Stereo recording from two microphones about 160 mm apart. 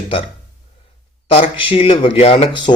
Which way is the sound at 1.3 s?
35° left (ahead or behind).